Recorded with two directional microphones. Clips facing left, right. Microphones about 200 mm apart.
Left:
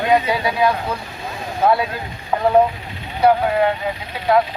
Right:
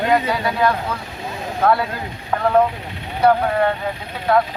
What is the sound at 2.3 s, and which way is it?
Speech, 15° left (ahead or behind).